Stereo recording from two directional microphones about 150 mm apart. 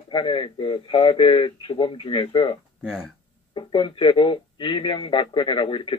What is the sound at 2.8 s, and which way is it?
Speech, 5° right (ahead or behind).